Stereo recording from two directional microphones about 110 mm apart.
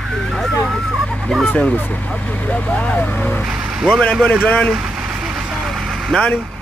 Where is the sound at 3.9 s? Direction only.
10° left (ahead or behind).